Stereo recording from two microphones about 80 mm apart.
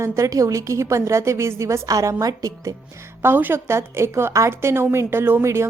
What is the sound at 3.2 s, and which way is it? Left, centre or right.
A woman's voice, right.